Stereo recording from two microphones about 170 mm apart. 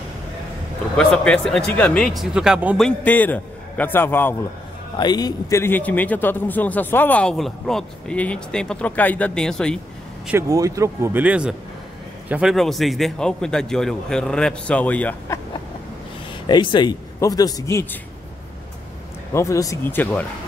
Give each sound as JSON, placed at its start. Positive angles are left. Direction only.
{"t": 0.9, "sound": "a man's voice", "side_deg": 5}
{"t": 2.8, "sound": "a man's voice", "side_deg": 10}
{"t": 4.9, "sound": "a man's voice", "side_deg": 25}
{"t": 10.5, "sound": "a man's voice", "side_deg": -20}
{"t": 16.4, "sound": "speech", "side_deg": 25}
{"t": 19.3, "sound": "a man's voice", "side_deg": 20}